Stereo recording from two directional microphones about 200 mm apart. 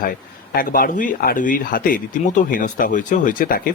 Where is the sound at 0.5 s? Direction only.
45° left (ahead or behind).